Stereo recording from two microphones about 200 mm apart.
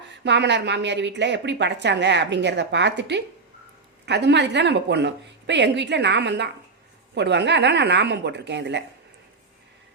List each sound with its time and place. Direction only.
0.3 s a woman's voice: 60° right (ahead or behind)